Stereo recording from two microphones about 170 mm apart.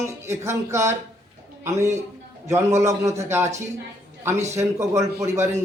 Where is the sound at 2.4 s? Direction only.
15° right (ahead or behind).